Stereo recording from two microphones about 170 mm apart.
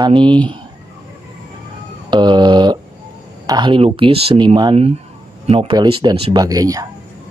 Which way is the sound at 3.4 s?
25° right (ahead or behind).